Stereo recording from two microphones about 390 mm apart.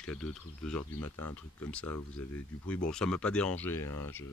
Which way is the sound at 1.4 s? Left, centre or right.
Centre.